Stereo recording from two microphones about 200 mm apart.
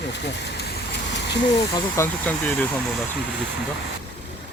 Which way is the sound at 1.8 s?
15° left (ahead or behind).